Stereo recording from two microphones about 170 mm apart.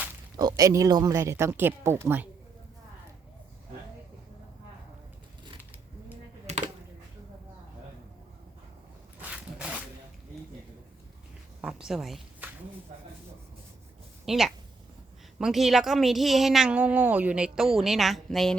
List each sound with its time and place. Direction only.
0.3 s speech: 20° right (ahead or behind)
6.5 s a sound: 40° right (ahead or behind)
9.2 s zipper: 5° right (ahead or behind)
11.6 s a woman's voice: 5° right (ahead or behind)
14.3 s a woman's voice: centre (ahead or behind)